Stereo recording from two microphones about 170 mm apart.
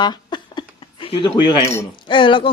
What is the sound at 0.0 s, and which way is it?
Cutlery, 25° left (ahead or behind).